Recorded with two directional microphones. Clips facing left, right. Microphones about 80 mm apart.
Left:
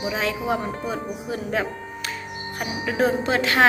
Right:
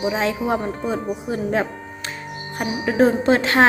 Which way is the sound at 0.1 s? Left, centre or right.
Right.